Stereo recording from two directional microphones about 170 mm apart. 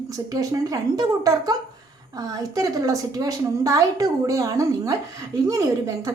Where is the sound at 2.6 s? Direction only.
20° right (ahead or behind).